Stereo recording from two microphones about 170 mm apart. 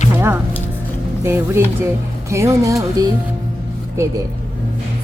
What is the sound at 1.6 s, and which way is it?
A woman's voice, 15° right (ahead or behind).